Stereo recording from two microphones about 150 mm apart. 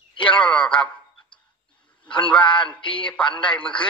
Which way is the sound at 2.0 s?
30° left (ahead or behind).